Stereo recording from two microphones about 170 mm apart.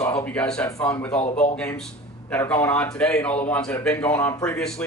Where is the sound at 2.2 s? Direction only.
10° left (ahead or behind).